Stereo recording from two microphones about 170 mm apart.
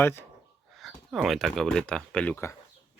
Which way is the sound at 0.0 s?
15° left (ahead or behind).